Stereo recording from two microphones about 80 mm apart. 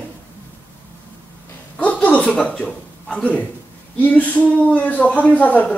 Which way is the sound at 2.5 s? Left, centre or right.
Centre.